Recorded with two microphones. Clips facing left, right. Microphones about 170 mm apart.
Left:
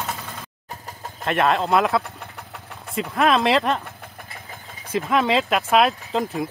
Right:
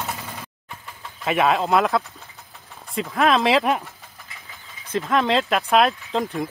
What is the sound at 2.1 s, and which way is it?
Engine, 65° left (ahead or behind).